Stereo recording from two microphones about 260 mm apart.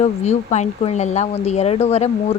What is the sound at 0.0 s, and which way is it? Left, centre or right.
Speech, left.